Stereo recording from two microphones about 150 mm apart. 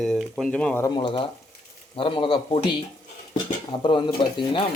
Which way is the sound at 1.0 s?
30° left (ahead or behind).